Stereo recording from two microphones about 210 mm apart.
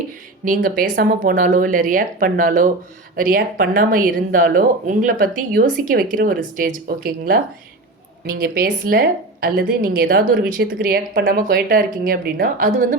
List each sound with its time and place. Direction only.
0.4 s speech: 40° right (ahead or behind)